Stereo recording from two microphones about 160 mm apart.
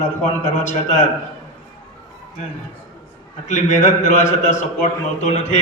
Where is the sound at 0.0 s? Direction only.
50° left (ahead or behind).